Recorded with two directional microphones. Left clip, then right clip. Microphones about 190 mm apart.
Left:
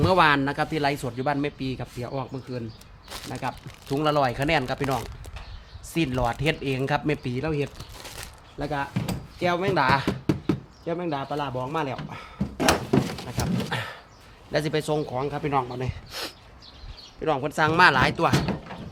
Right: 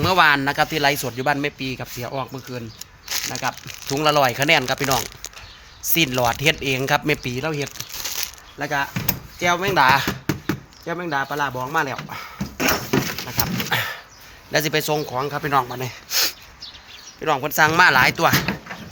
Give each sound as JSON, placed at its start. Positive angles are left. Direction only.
{"t": 0.0, "sound": "speech", "side_deg": 10}
{"t": 0.3, "sound": "speech", "side_deg": -10}
{"t": 2.7, "sound": "crumpling", "side_deg": 20}
{"t": 3.2, "sound": "speech", "side_deg": -10}
{"t": 5.9, "sound": "speech", "side_deg": -15}
{"t": 7.8, "sound": "crumpling", "side_deg": 15}
{"t": 8.5, "sound": "speech", "side_deg": -15}
{"t": 10.2, "sound": "a sound", "side_deg": 5}
{"t": 10.8, "sound": "speech", "side_deg": -5}
{"t": 13.2, "sound": "a sound", "side_deg": -10}
{"t": 14.5, "sound": "speech", "side_deg": -10}
{"t": 15.8, "sound": "a sound", "side_deg": -10}
{"t": 17.2, "sound": "speech", "side_deg": 0}